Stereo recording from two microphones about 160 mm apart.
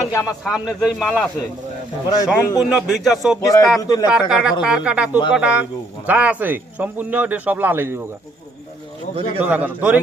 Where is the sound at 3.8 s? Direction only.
20° left (ahead or behind).